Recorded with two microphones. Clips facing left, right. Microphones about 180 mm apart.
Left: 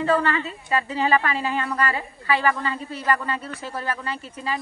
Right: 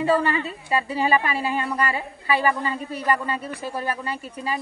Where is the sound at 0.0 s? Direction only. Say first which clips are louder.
Right 1 dB; 10° right (ahead or behind).